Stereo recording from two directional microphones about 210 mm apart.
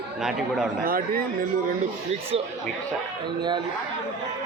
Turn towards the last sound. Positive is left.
turn(degrees=-20)  # may be behind; listen again after turning